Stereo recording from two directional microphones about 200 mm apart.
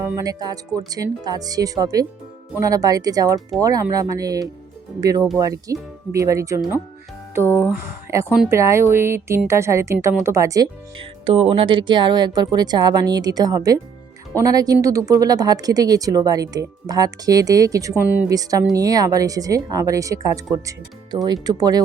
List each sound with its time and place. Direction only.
0.0 s speech: 20° right (ahead or behind)
7.4 s speech: 10° left (ahead or behind)
7.7 s speech: 15° right (ahead or behind)